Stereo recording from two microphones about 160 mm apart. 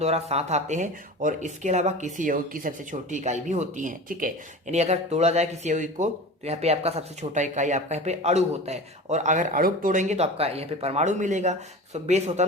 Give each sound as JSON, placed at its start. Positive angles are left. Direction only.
{"t": 0.0, "sound": "speech", "side_deg": -40}